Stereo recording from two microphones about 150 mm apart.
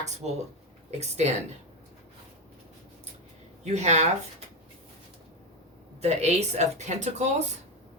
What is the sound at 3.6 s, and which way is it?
Speech, 50° right (ahead or behind).